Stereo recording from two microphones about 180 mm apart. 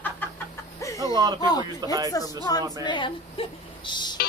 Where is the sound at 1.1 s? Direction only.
20° right (ahead or behind).